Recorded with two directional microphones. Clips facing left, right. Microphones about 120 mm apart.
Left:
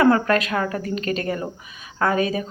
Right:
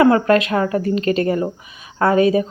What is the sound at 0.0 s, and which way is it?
Speech, 25° right (ahead or behind).